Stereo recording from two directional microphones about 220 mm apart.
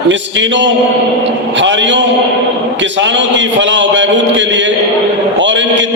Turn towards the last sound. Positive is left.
turn(degrees=-55)  # may be behind; listen again after turning